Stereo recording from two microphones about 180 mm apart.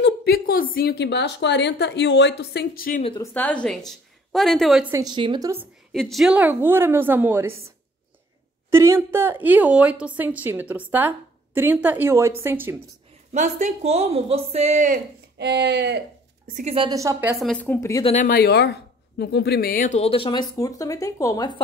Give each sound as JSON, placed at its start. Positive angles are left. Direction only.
{"t": 0.0, "sound": "a woman's voice", "side_deg": 60}
{"t": 3.2, "sound": "a woman's voice", "side_deg": 10}
{"t": 4.9, "sound": "a woman's voice", "side_deg": -25}
{"t": 5.9, "sound": "a woman's voice", "side_deg": 0}
{"t": 13.3, "sound": "speech", "side_deg": -40}
{"t": 15.3, "sound": "speech", "side_deg": -70}
{"t": 16.4, "sound": "a woman's voice", "side_deg": -45}
{"t": 16.7, "sound": "a woman's voice", "side_deg": -30}
{"t": 17.0, "sound": "a woman's voice", "side_deg": -10}
{"t": 17.5, "sound": "speech", "side_deg": 10}
{"t": 17.7, "sound": "speech", "side_deg": 20}
{"t": 18.0, "sound": "speech", "side_deg": 45}